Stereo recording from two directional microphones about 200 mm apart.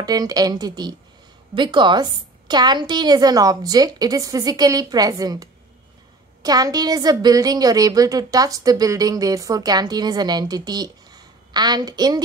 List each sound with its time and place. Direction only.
0.0 s a woman's voice: 20° right (ahead or behind)